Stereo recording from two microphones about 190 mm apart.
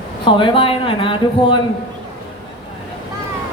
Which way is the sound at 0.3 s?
25° left (ahead or behind).